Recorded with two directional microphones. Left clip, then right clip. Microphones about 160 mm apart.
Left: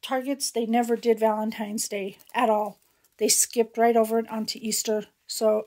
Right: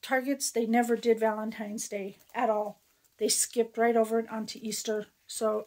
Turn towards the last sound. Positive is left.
turn(degrees=35)  # may be behind; listen again after turning